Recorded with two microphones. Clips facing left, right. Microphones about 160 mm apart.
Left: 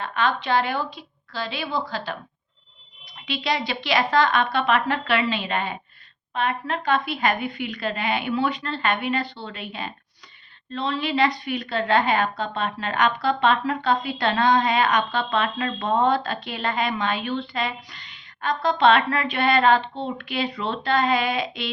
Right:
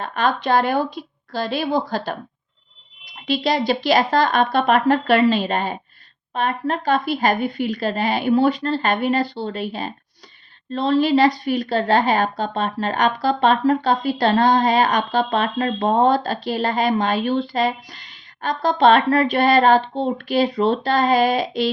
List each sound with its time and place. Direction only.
0.0 s a woman's voice: 45° right (ahead or behind)
3.2 s a woman's voice: 40° right (ahead or behind)